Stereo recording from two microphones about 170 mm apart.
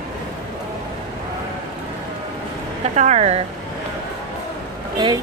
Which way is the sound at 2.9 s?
40° right (ahead or behind).